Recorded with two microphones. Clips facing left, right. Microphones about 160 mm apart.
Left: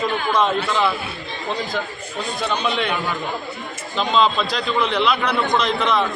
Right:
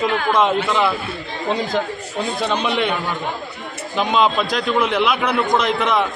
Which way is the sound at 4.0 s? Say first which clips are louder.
Right 1 dB; 10° right (ahead or behind).